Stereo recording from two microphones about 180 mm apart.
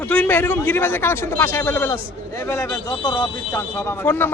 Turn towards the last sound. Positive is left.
turn(degrees=10)  # may be behind; listen again after turning